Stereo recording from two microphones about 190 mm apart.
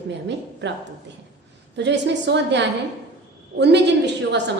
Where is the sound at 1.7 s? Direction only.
65° right (ahead or behind).